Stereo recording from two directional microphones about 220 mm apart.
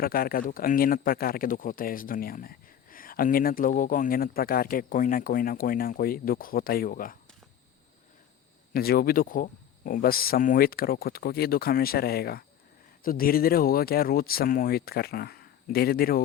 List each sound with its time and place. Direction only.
0.0 s speech: 40° left (ahead or behind)
8.7 s speech: 45° left (ahead or behind)